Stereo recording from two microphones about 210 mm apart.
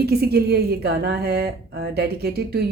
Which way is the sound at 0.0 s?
50° right (ahead or behind).